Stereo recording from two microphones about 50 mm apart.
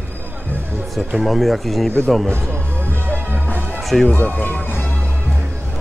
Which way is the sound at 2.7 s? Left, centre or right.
Right.